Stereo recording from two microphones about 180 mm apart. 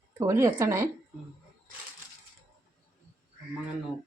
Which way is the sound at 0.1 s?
15° right (ahead or behind).